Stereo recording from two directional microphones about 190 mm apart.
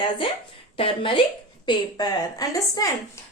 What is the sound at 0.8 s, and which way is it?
A woman's voice, 25° left (ahead or behind).